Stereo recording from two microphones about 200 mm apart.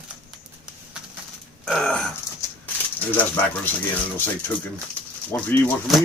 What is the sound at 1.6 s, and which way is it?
Speech, 5° left (ahead or behind).